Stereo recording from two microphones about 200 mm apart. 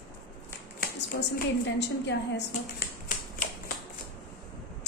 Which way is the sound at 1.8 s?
60° left (ahead or behind).